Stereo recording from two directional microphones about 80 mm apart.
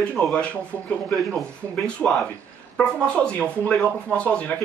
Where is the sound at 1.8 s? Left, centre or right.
Centre.